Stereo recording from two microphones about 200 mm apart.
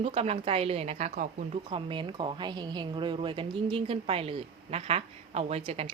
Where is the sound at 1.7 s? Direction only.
25° right (ahead or behind).